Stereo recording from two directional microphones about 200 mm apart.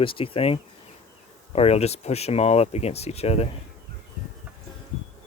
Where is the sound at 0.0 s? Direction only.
25° left (ahead or behind).